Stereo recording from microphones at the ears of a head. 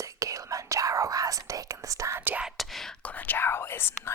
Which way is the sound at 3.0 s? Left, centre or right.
Left.